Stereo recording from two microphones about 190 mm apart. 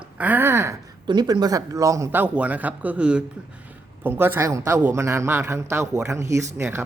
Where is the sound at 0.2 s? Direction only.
10° right (ahead or behind).